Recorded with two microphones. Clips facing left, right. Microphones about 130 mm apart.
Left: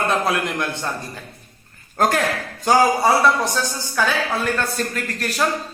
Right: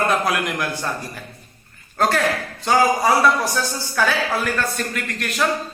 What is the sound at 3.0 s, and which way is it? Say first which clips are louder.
A woman's voice: even; 20° left (ahead or behind).